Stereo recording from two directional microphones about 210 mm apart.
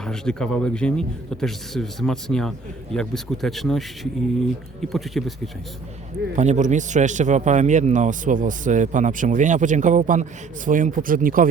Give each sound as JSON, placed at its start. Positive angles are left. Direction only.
{"t": 0.0, "sound": "a man's voice", "side_deg": 5}
{"t": 6.3, "sound": "a man's voice", "side_deg": -35}